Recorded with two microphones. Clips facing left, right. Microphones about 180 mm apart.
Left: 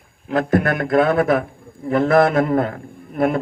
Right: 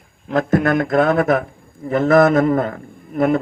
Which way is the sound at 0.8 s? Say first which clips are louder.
Right 1 dB; 45° right (ahead or behind).